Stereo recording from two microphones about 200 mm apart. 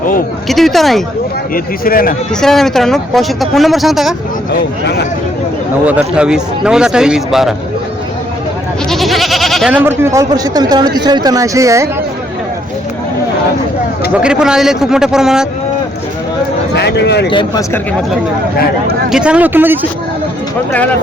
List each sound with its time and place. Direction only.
0.4 s speech: centre (ahead or behind)
1.5 s speech: 45° left (ahead or behind)
2.3 s speech: centre (ahead or behind)
5.8 s speech: 5° right (ahead or behind)
8.9 s speech: centre (ahead or behind); by 11.9 s 15° right (ahead or behind)
14.1 s speech: 5° right (ahead or behind)
16.7 s speech: 55° left (ahead or behind)
17.3 s speech: 15° left (ahead or behind)
19.1 s speech: 5° right (ahead or behind)